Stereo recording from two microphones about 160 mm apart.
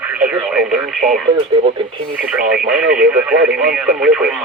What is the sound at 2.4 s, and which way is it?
Speech, 75° right (ahead or behind).